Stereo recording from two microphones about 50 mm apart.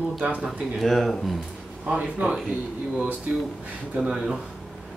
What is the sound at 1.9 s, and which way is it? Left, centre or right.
Speech, right.